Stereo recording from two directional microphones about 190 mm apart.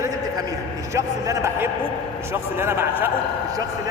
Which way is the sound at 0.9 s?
15° right (ahead or behind).